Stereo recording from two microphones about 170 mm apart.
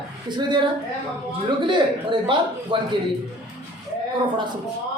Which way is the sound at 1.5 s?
30° right (ahead or behind).